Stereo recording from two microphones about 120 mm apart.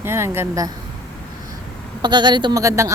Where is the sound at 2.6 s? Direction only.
25° right (ahead or behind).